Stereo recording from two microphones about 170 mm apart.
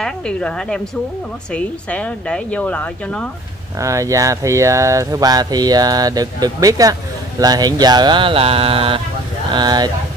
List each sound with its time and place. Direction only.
0.0 s a woman's voice: 5° left (ahead or behind)
3.8 s speech: 20° right (ahead or behind)